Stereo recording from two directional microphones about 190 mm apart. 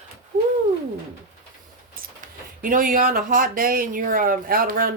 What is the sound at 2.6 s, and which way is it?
Speech, 45° right (ahead or behind).